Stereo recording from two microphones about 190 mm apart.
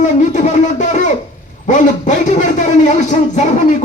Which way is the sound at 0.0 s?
40° left (ahead or behind).